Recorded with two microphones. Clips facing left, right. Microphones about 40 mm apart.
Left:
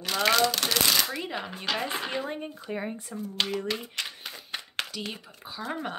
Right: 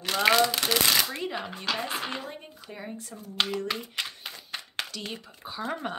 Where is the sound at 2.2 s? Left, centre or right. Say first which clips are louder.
Left 6 dB; left.